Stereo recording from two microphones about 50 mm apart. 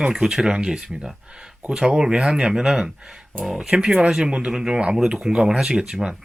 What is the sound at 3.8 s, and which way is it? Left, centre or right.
Speech, centre.